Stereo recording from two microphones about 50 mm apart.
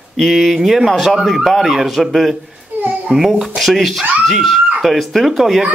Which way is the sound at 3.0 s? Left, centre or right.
Centre.